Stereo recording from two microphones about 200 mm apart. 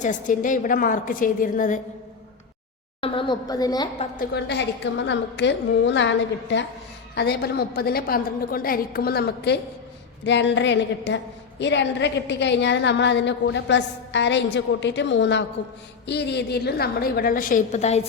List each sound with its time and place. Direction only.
0.0 s a woman's voice: 40° left (ahead or behind)
3.0 s a woman's voice: 25° left (ahead or behind)
4.2 s a woman's voice: 55° left (ahead or behind)
7.2 s a woman's voice: 55° left (ahead or behind); by 18.0 s 35° left (ahead or behind)